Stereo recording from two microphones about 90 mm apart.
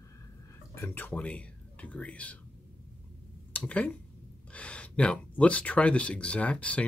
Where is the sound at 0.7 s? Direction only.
25° left (ahead or behind).